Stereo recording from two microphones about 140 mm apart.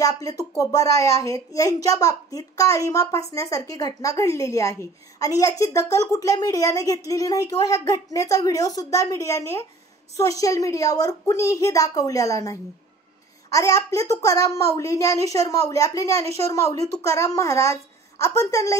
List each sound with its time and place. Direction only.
0.0 s a woman's voice: 25° left (ahead or behind)